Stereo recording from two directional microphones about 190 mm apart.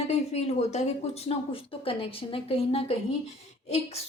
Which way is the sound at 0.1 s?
35° left (ahead or behind).